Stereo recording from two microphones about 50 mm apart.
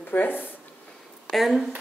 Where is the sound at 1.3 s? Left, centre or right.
Centre.